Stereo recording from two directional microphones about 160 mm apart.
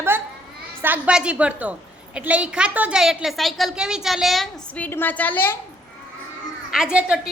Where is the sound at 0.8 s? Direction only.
10° right (ahead or behind); by 5.5 s 10° left (ahead or behind).